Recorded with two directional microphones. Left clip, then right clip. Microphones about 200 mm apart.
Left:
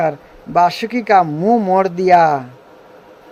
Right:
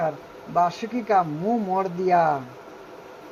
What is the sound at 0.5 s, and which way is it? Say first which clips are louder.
Speech: left 9 dB; 30° left (ahead or behind).